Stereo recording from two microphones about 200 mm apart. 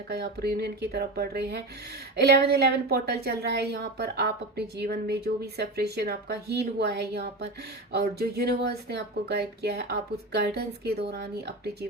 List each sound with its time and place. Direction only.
0.1 s a woman's voice: 50° right (ahead or behind)